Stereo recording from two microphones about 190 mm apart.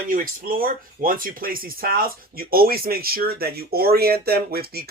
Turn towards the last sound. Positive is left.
turn(degrees=-55)  # may be behind; listen again after turning